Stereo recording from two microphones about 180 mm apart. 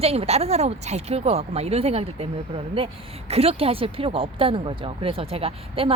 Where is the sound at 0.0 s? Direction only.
35° right (ahead or behind).